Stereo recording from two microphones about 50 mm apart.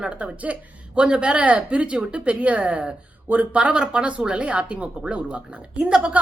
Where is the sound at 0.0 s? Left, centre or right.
Right.